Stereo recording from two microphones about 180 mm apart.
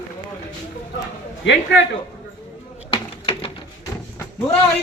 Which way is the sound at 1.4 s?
75° left (ahead or behind).